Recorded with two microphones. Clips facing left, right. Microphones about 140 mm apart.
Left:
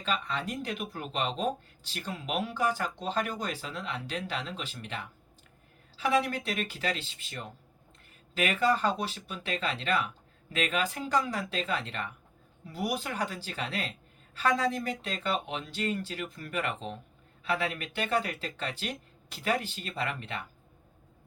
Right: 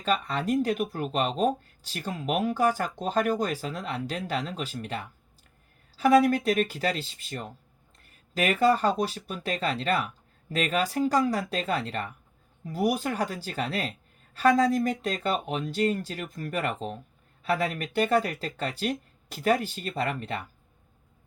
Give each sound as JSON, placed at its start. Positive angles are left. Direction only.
{"t": 0.0, "sound": "speech", "side_deg": -40}